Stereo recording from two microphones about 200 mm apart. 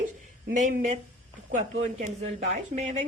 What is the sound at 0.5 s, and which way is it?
Speech, 40° right (ahead or behind).